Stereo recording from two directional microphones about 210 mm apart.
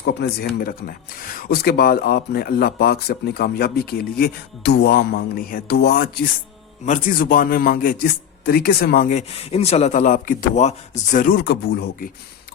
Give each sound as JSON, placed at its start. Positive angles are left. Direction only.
{"t": 0.0, "sound": "a man's voice", "side_deg": 50}